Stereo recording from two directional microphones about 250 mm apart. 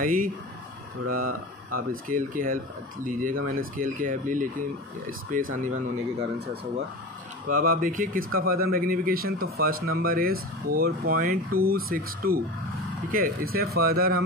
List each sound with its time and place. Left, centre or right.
0.0 s speech: right
7.4 s speech: right